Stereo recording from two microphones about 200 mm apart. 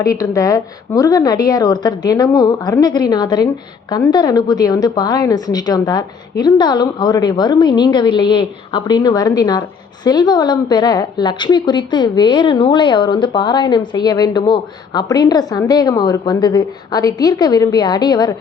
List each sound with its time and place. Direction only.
0.0 s a woman's voice: 15° left (ahead or behind)